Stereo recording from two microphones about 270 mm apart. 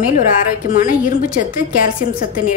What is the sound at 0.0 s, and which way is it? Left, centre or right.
A woman's voice, left.